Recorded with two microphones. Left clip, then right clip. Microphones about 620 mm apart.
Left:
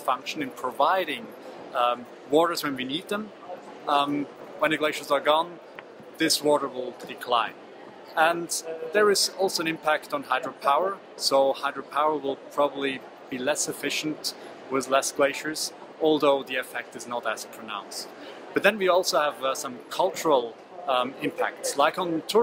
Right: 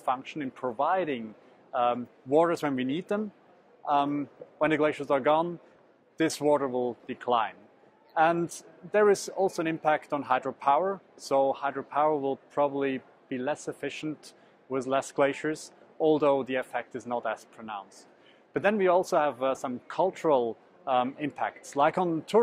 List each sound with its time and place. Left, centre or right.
0.0 s speech: right
1.7 s speech: right
14.7 s speech: right